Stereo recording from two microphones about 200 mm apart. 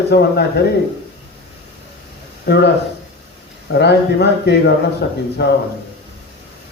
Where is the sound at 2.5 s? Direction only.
55° left (ahead or behind).